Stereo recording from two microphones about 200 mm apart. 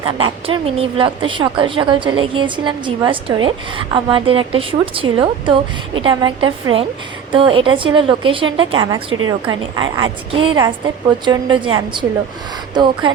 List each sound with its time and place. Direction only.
0.0 s a woman's voice: 25° right (ahead or behind)